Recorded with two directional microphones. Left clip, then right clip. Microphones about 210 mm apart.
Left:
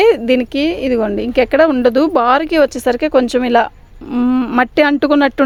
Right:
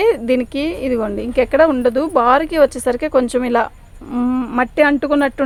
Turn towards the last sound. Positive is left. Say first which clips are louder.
# left 4 dB
turn(degrees=50)  # may be behind; listen again after turning